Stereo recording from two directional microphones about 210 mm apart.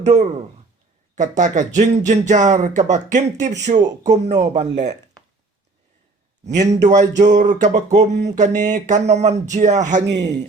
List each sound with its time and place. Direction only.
0.0 s speech: 35° right (ahead or behind)
6.6 s speech: 35° right (ahead or behind)